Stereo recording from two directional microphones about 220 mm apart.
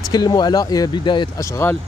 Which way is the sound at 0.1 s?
20° left (ahead or behind).